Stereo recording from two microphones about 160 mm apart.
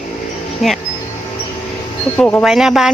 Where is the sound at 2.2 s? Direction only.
10° left (ahead or behind).